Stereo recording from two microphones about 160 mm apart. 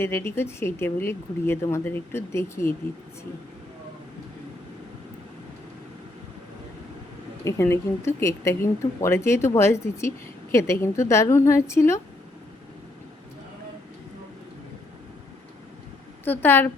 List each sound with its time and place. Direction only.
0.0 s speech: 15° left (ahead or behind)
7.4 s speech: 15° left (ahead or behind)
16.2 s speech: 15° left (ahead or behind)